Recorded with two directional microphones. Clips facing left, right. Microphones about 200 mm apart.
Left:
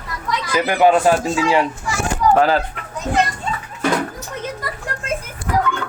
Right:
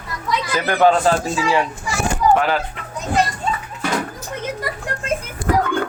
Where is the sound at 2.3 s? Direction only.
35° left (ahead or behind).